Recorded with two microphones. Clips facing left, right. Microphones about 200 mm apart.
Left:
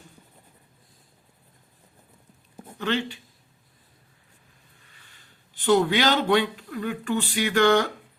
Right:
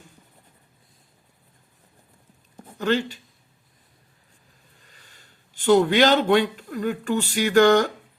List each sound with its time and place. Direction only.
2.7 s speech: 45° right (ahead or behind)
4.9 s a man's voice: 45° right (ahead or behind)